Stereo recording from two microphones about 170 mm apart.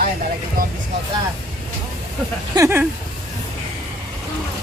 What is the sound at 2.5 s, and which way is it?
Speech, 15° right (ahead or behind).